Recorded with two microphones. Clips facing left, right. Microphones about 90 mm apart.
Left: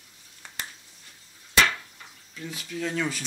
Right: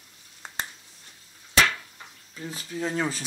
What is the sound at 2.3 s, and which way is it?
Speech, 35° right (ahead or behind).